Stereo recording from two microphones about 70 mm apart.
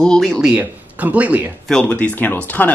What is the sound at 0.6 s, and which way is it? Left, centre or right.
Speech, right.